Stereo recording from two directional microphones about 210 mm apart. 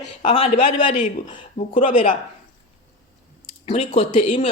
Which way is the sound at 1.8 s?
40° left (ahead or behind).